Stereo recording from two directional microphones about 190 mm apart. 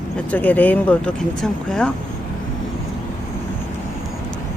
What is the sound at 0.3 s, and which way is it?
Speech, 10° left (ahead or behind).